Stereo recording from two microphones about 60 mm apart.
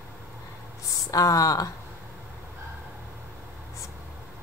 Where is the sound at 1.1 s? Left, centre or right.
Left.